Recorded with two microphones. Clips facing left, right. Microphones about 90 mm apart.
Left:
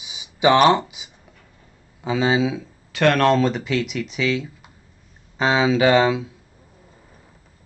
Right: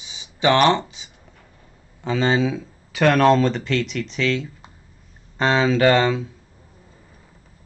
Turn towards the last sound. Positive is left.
turn(degrees=5)  # may be behind; listen again after turning